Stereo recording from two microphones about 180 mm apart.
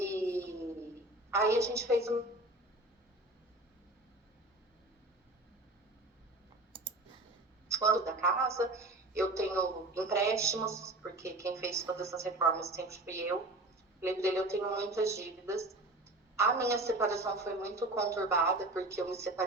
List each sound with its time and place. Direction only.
0.0 s child singing: 15° right (ahead or behind)
1.3 s a woman's voice: 15° right (ahead or behind)
7.7 s a woman's voice: 15° right (ahead or behind)